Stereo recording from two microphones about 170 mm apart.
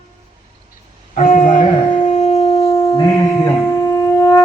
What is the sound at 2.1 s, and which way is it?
Shofar, 40° left (ahead or behind).